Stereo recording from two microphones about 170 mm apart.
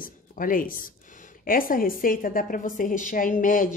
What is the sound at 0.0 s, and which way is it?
Speech, 55° left (ahead or behind).